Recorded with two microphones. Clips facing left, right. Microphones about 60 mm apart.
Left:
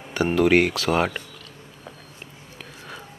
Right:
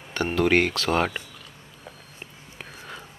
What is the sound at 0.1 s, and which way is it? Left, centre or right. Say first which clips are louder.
Speech: left 3 dB; centre.